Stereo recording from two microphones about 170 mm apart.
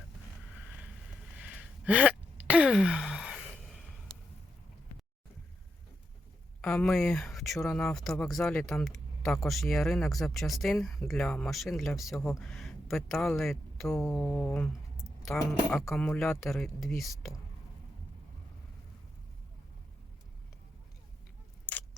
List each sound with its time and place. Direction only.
1.4 s gasp: 10° right (ahead or behind)
4.1 s a sound: 25° left (ahead or behind)
6.6 s speech: 5° left (ahead or behind)
21.7 s clock: 10° left (ahead or behind)